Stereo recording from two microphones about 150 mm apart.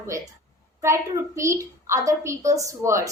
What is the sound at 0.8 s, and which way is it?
A woman's voice, 20° right (ahead or behind).